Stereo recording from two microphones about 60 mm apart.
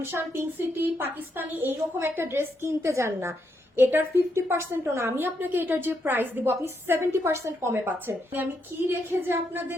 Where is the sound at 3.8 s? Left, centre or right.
Right.